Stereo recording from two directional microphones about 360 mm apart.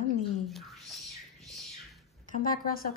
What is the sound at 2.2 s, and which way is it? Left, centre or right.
Speech, left.